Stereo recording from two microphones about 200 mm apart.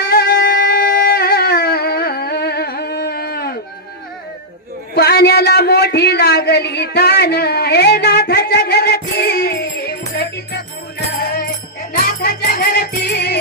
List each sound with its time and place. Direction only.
0.0 s music: 50° left (ahead or behind)
4.9 s a sound: 50° left (ahead or behind)
11.1 s music: 50° left (ahead or behind)